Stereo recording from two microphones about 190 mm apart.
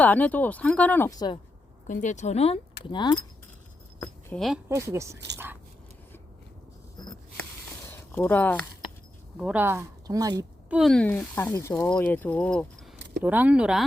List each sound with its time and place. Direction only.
0.0 s speech: 10° left (ahead or behind)
1.9 s speech: 40° left (ahead or behind)
2.9 s speech: 20° left (ahead or behind)
4.0 s speech: 5° left (ahead or behind)
4.7 s speech: 15° right (ahead or behind)
8.1 s speech: 10° left (ahead or behind)
9.4 s speech: 10° right (ahead or behind)
10.7 s speech: centre (ahead or behind)
13.2 s speech: 10° right (ahead or behind)